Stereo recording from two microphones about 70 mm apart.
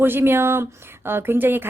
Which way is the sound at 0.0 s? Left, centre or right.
Right.